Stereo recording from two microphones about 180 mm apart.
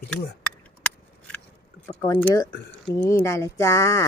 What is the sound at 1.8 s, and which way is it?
Speech, 20° left (ahead or behind).